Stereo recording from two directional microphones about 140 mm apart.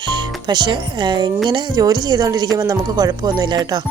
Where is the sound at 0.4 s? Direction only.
30° right (ahead or behind).